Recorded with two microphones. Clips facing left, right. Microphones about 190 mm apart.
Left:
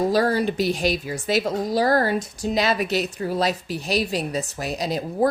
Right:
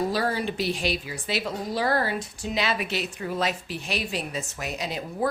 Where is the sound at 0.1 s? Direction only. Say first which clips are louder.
Left 6 dB; 40° left (ahead or behind).